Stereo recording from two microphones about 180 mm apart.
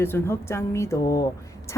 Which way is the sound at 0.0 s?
15° left (ahead or behind).